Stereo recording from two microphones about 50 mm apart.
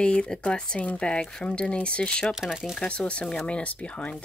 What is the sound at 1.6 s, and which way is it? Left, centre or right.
Speech, left.